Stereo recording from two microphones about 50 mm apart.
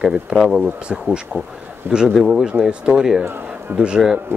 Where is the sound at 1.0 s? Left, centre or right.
Centre.